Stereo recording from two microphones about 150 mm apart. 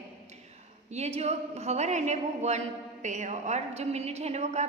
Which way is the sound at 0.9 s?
45° right (ahead or behind).